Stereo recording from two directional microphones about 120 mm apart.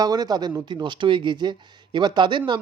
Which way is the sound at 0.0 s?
35° right (ahead or behind).